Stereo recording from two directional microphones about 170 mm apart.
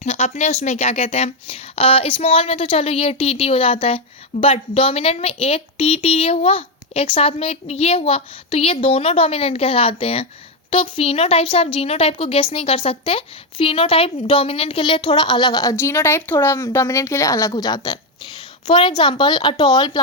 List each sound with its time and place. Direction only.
0.0 s a woman's voice: 40° left (ahead or behind); by 20.0 s 25° left (ahead or behind)